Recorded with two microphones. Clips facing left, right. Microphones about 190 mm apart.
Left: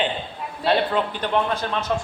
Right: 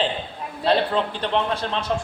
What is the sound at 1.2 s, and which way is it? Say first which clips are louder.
Speech: left 1 dB; 30° right (ahead or behind).